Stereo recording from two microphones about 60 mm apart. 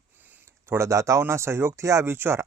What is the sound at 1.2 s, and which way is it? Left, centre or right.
Speech, right.